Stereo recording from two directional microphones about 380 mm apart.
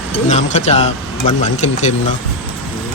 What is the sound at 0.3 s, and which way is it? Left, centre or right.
Speech, centre.